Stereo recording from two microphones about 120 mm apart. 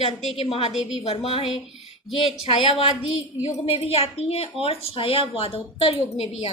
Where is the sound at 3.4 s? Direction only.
65° left (ahead or behind).